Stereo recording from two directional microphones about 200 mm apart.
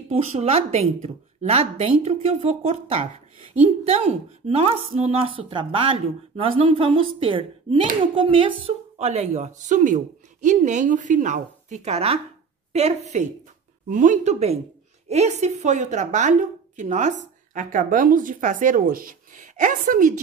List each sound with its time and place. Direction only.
0.1 s a woman's voice: 35° right (ahead or behind)